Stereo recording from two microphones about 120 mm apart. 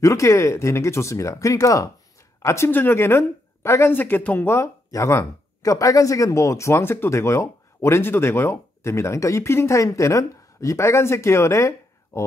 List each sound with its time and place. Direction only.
0.0 s speech: 25° left (ahead or behind)